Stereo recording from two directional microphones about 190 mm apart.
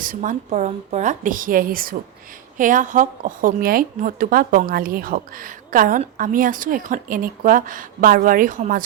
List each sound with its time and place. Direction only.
0.0 s a woman's voice: 45° right (ahead or behind)